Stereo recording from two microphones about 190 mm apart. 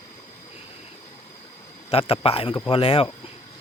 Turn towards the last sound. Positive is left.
turn(degrees=30)  # may be behind; listen again after turning